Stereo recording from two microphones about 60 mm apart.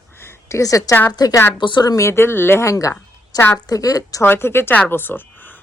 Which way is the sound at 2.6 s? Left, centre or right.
Left.